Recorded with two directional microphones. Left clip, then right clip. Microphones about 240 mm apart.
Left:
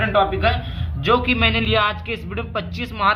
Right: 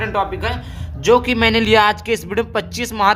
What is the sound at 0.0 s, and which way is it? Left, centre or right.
A man's voice, right.